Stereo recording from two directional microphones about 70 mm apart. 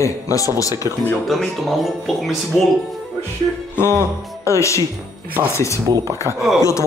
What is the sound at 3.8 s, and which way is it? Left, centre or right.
Speech, left.